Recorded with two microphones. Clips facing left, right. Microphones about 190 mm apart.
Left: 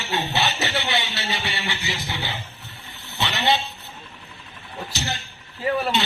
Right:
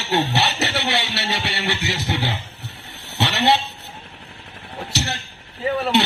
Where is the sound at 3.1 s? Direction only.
70° right (ahead or behind).